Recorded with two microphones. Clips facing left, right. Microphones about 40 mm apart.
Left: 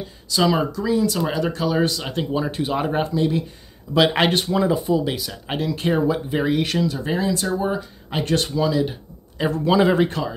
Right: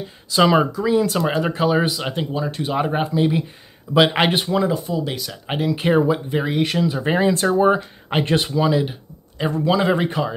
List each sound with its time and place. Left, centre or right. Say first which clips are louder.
0.3 s speech: right 4 dB; right
2.3 s speech: left 1 dB; centre
3.2 s speech: right 4 dB; right
3.9 s speech: right 1 dB; centre
4.6 s speech: left 1 dB; centre
5.5 s speech: right 3 dB; centre
6.3 s speech: even; centre
6.9 s speech: right 4 dB; right
9.4 s speech: left 1 dB; centre
10.0 s speech: right 3 dB; centre